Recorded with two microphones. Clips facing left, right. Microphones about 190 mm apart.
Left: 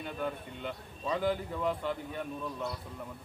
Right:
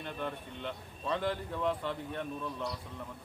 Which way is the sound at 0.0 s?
5° left (ahead or behind).